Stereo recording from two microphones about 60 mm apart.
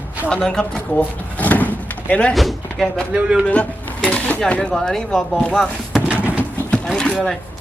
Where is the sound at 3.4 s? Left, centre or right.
Left.